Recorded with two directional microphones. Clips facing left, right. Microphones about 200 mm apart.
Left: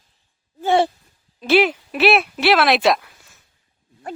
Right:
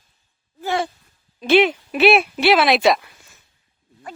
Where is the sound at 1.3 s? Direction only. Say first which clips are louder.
Right 1 dB; 5° left (ahead or behind).